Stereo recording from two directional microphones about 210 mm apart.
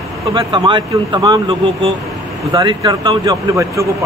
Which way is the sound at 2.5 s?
20° right (ahead or behind).